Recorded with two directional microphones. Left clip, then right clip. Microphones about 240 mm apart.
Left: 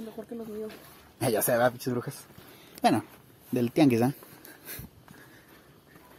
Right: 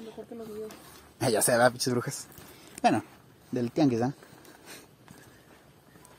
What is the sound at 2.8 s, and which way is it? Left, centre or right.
Speech, centre.